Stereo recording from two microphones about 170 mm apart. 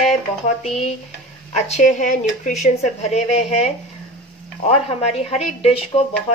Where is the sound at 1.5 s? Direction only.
45° left (ahead or behind).